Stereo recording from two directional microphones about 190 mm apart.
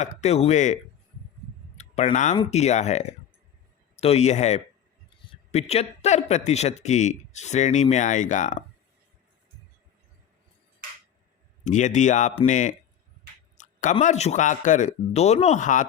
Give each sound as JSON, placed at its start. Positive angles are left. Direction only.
{"t": 0.0, "sound": "speech", "side_deg": 35}
{"t": 1.7, "sound": "clicking", "side_deg": 35}
{"t": 2.3, "sound": "speech", "side_deg": 30}
{"t": 11.6, "sound": "speech", "side_deg": 40}
{"t": 13.6, "sound": "a sound", "side_deg": 40}
{"t": 14.0, "sound": "speech", "side_deg": 35}